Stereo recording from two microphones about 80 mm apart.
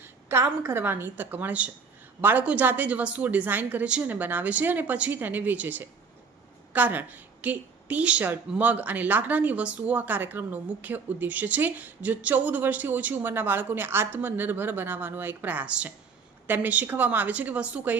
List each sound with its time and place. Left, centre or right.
0.0 s a woman's voice: right